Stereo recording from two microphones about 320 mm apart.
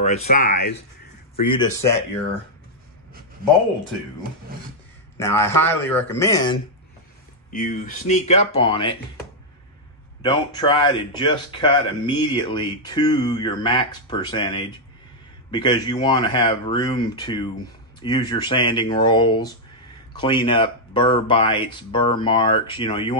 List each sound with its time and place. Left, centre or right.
0.0 s speech: left
1.3 s speech: centre
5.1 s speech: centre
7.5 s speech: left
10.2 s speech: centre